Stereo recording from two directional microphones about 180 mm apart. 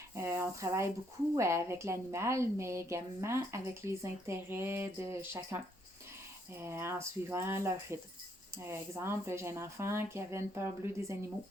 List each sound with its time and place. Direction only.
0.1 s a woman's voice: 15° right (ahead or behind)